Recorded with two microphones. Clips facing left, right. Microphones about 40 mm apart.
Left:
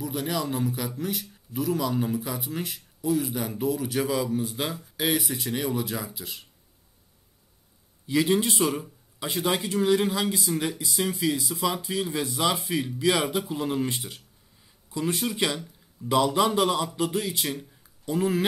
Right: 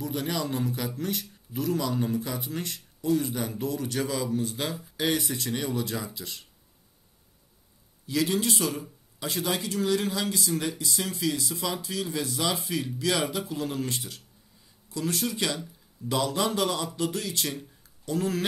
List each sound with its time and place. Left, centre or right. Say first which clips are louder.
0.0 s a man's voice: left 1 dB; centre
8.1 s speech: left 3 dB; left